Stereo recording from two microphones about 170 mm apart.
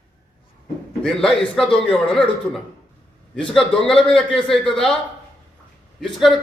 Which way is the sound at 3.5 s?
5° left (ahead or behind).